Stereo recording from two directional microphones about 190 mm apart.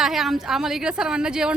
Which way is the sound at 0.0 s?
Centre (ahead or behind).